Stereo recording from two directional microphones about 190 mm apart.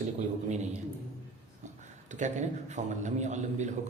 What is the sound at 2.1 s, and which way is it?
A man's voice, 40° right (ahead or behind).